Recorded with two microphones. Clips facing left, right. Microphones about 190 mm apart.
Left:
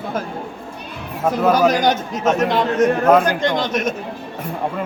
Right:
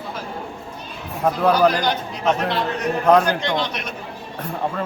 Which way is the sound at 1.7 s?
45° left (ahead or behind).